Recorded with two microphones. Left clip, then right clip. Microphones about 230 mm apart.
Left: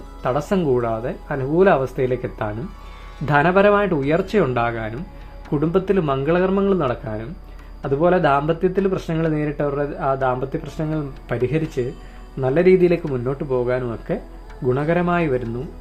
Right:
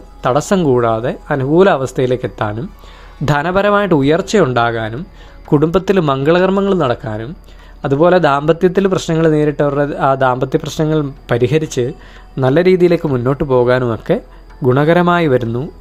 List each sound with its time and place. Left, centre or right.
0.2 s speech: right